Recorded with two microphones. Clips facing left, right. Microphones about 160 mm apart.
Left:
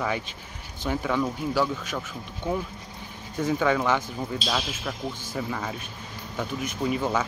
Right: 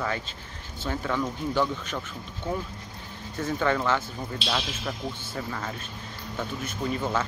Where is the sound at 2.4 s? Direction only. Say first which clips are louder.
Left 3 dB; 15° left (ahead or behind).